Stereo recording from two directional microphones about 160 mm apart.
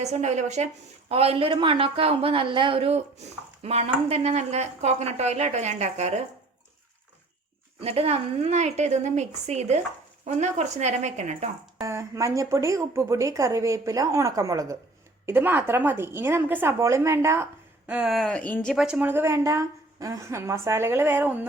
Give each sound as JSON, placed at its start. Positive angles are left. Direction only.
{"t": 0.0, "sound": "a woman's voice", "side_deg": -45}
{"t": 7.8, "sound": "a woman's voice", "side_deg": -40}
{"t": 11.8, "sound": "a woman's voice", "side_deg": -20}
{"t": 18.7, "sound": "a woman's voice", "side_deg": -5}